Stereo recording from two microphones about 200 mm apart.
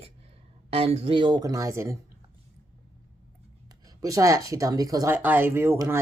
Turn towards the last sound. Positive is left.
turn(degrees=-10)  # may be behind; listen again after turning